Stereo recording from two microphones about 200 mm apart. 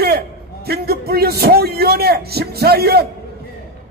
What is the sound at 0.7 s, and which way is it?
A man's voice, 50° right (ahead or behind).